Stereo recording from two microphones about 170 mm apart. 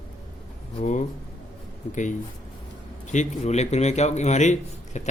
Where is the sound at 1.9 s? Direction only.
45° left (ahead or behind).